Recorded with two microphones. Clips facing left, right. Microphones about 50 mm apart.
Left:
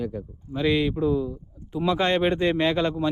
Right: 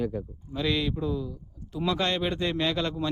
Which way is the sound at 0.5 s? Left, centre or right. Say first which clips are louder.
Left 5 dB; left.